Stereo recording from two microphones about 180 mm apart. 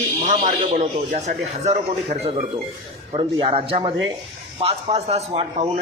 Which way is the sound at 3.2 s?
25° right (ahead or behind).